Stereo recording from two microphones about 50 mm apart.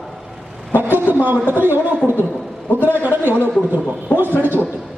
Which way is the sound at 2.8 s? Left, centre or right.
Left.